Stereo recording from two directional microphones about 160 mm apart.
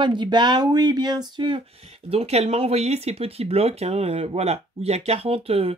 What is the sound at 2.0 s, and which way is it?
Speech, 40° right (ahead or behind).